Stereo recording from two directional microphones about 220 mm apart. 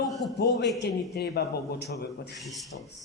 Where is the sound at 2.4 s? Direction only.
Centre (ahead or behind).